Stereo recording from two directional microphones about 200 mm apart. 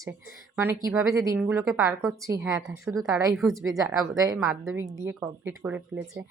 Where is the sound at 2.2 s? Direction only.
15° right (ahead or behind).